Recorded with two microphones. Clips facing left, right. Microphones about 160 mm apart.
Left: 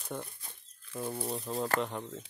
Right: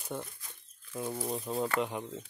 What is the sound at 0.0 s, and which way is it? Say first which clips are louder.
Speech: right 1 dB; 5° right (ahead or behind).